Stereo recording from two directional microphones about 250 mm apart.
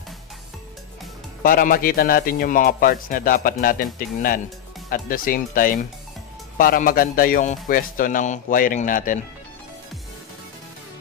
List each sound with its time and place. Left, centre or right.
1.4 s speech: left